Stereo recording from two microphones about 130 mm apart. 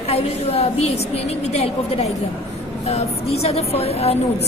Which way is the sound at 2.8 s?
55° left (ahead or behind).